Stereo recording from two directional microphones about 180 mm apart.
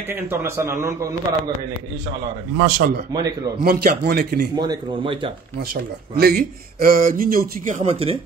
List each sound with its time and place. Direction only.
0.1 s a man's voice: 15° right (ahead or behind)
2.5 s a man's voice: 60° right (ahead or behind)
3.1 s speech: 20° right (ahead or behind)
3.6 s a man's voice: 55° right (ahead or behind)
4.6 s speech: 25° right (ahead or behind)
6.1 s speech: 55° right (ahead or behind); by 8.2 s 35° right (ahead or behind)